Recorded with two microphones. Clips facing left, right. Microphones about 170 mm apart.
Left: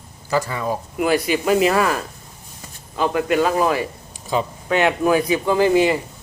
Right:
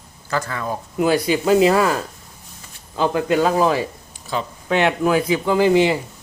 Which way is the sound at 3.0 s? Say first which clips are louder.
Right 1 dB; 25° right (ahead or behind).